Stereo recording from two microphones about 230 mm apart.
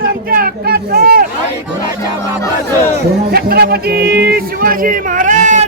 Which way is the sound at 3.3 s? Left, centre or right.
Right.